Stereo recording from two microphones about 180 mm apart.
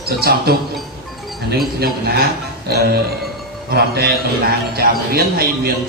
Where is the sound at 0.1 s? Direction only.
60° right (ahead or behind).